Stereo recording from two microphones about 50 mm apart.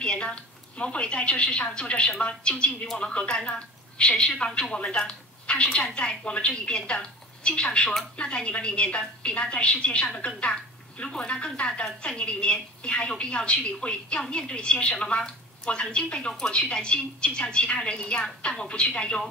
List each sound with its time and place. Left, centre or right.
0.0 s a woman's voice: centre
5.7 s a woman's voice: centre
5.9 s a woman's voice: left